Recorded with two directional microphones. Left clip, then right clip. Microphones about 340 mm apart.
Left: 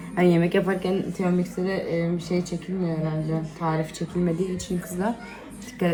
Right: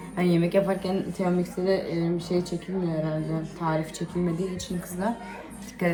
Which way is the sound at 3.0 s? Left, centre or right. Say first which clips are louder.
Left 1 dB; centre.